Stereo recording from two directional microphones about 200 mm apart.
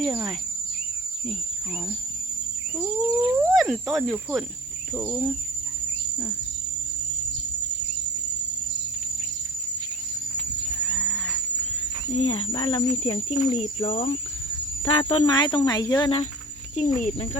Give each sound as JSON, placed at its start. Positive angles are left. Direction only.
{"t": 0.0, "sound": "cricket", "side_deg": 0}
{"t": 2.7, "sound": "a sound", "side_deg": -15}
{"t": 3.5, "sound": "insect", "side_deg": 0}
{"t": 4.9, "sound": "cricket", "side_deg": 15}
{"t": 10.8, "sound": "livestock", "side_deg": 5}
{"t": 12.1, "sound": "speech", "side_deg": 25}
{"t": 17.0, "sound": "speech", "side_deg": 35}